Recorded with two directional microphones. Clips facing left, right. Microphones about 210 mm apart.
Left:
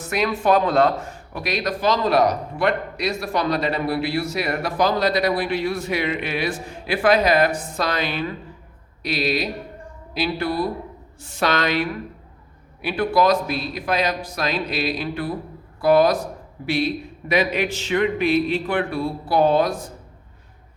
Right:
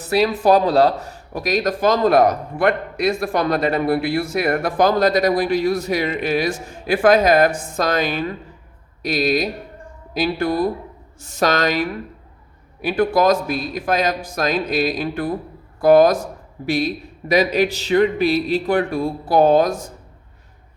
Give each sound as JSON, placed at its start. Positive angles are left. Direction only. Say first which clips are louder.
{"t": 0.0, "sound": "speech", "louder": "right 5 dB", "side_deg": -35}